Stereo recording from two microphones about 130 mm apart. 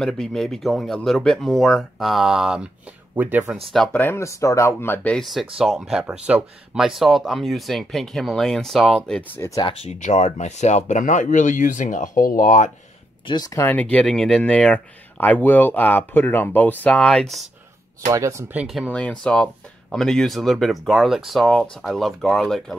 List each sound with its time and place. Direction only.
0.0 s speech: 5° left (ahead or behind); by 3.4 s 15° right (ahead or behind)
3.7 s speech: 10° left (ahead or behind)
5.1 s speech: centre (ahead or behind)
9.3 s speech: 20° left (ahead or behind)
9.8 s speech: 65° left (ahead or behind); by 12.7 s 80° left
13.3 s speech: 30° left (ahead or behind)
13.7 s speech: 10° left (ahead or behind)
18.0 s speech: 25° right (ahead or behind)
18.6 s speech: 5° right (ahead or behind)
18.9 s speech: 10° left (ahead or behind)